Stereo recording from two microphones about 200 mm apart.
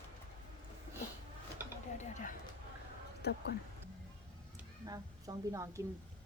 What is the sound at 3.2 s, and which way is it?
Speech, 55° left (ahead or behind).